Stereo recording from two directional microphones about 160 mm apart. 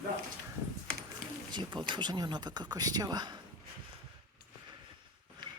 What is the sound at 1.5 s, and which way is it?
Speech, 30° right (ahead or behind).